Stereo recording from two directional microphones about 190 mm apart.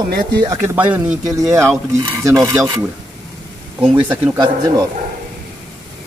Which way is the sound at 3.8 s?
10° right (ahead or behind).